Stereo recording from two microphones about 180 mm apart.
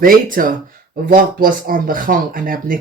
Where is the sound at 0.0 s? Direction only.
50° right (ahead or behind).